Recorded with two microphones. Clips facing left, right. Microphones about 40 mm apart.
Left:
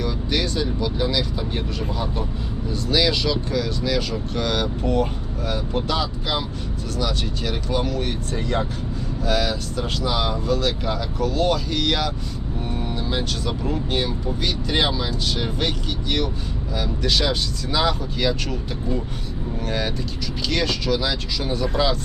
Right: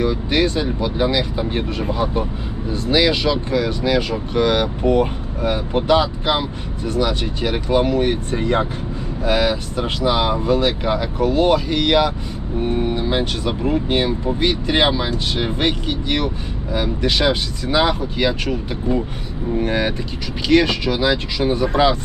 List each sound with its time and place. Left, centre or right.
0.0 s speech: right